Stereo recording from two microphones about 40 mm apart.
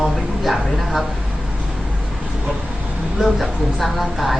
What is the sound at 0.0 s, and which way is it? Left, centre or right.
A woman's voice, centre.